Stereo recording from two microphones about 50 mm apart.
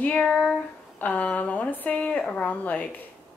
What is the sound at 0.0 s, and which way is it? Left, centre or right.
Speech, left.